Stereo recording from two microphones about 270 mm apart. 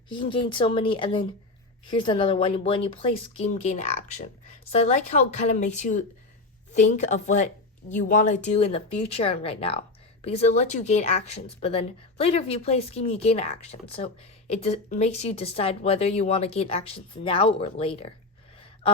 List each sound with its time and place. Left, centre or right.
0.1 s a woman's voice: centre